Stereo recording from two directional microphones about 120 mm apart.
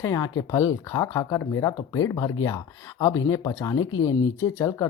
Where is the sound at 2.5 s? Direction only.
25° left (ahead or behind).